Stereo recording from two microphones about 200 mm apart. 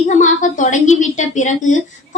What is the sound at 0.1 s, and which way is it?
Speech, 40° left (ahead or behind).